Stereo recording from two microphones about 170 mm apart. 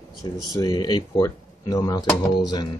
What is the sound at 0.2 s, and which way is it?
Speech, 25° left (ahead or behind).